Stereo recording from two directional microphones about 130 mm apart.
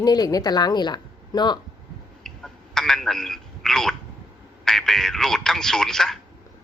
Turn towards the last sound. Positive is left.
turn(degrees=5)  # may be behind; listen again after turning